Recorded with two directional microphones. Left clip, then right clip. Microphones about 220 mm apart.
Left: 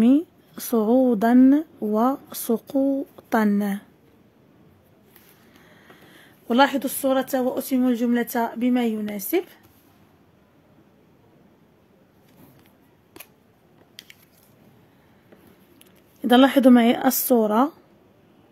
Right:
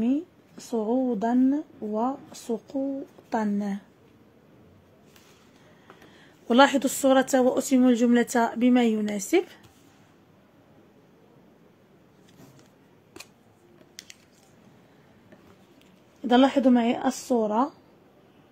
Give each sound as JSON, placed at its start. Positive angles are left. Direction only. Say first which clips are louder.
{"t": 0.0, "sound": "speech", "louder": "left 8 dB", "side_deg": 35}
{"t": 6.4, "sound": "speech", "louder": "even", "side_deg": 0}
{"t": 16.2, "sound": "speech", "louder": "left 4 dB", "side_deg": 30}